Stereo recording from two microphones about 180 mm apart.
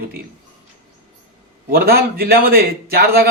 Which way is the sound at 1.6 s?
55° right (ahead or behind).